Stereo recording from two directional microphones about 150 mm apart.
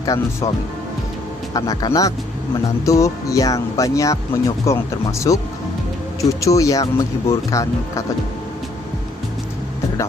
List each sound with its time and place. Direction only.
0.0 s speech: 25° left (ahead or behind)
1.5 s speech: 25° left (ahead or behind)